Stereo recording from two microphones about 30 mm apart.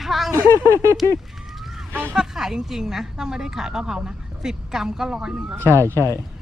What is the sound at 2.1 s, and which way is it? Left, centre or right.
Speech, centre.